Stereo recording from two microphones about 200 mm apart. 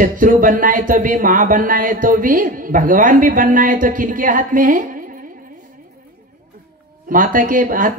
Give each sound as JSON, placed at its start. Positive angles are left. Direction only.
{"t": 0.0, "sound": "speech", "side_deg": -45}
{"t": 7.1, "sound": "speech", "side_deg": -45}